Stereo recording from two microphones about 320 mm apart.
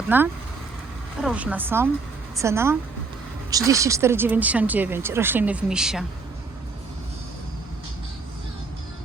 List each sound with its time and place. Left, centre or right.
0.1 s a woman's voice: centre